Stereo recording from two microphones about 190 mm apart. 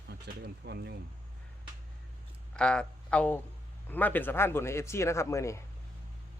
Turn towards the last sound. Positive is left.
turn(degrees=15)  # may be behind; listen again after turning